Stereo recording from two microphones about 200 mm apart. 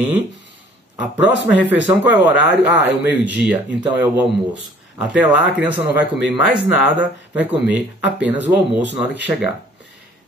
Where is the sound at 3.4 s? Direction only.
5° right (ahead or behind).